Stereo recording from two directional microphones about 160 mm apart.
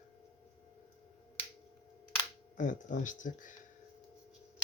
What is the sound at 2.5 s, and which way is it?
Speech, 55° left (ahead or behind).